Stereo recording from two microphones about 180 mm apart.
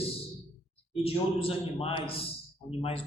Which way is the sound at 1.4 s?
30° left (ahead or behind).